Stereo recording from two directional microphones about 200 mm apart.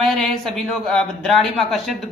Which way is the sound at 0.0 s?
Centre (ahead or behind).